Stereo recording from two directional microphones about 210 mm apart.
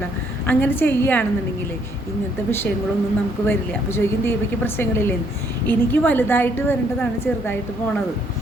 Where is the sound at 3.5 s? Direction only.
10° left (ahead or behind).